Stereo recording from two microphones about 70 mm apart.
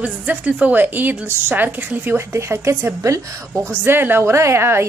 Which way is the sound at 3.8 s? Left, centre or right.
Right.